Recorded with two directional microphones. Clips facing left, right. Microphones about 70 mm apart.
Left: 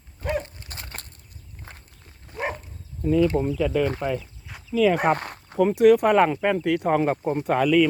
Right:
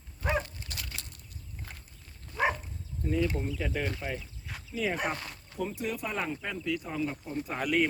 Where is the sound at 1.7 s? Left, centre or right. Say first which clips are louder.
Left 7 dB; left.